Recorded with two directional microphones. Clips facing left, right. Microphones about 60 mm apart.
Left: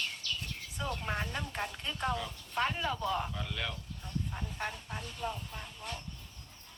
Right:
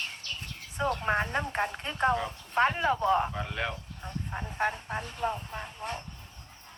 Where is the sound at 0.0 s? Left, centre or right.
Right.